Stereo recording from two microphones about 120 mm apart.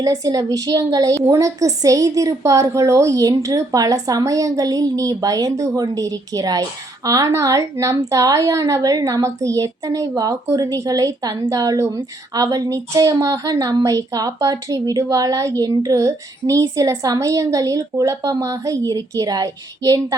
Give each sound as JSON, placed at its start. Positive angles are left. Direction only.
{"t": 0.0, "sound": "a woman's voice", "side_deg": -30}